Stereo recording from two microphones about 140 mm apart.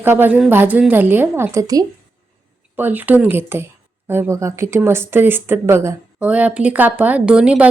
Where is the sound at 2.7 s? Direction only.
15° right (ahead or behind).